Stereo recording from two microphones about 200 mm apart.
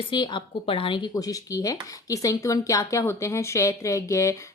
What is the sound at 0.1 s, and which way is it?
Speech, 25° left (ahead or behind).